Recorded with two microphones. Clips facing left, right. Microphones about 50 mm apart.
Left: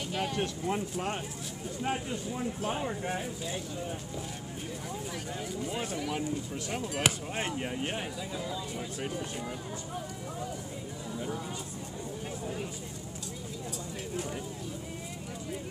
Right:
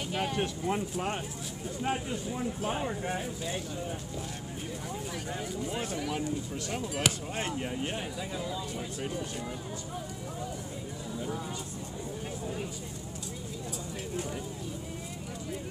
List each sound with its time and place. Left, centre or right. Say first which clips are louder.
0.1 s speech: right 1 dB; right
2.9 s speech: even; centre
5.8 s speech: even; centre
7.0 s speech: left 1 dB; centre